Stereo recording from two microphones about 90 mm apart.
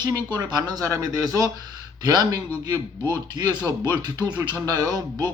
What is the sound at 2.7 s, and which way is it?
Speech, 25° left (ahead or behind).